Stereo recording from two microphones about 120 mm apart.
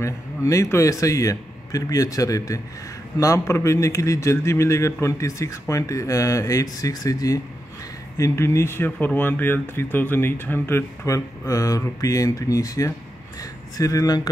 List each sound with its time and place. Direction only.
0.0 s speech: 25° left (ahead or behind)